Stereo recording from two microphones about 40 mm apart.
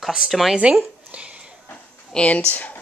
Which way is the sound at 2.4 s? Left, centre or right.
Left.